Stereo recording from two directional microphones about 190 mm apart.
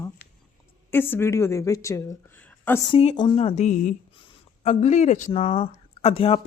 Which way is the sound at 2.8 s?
30° left (ahead or behind).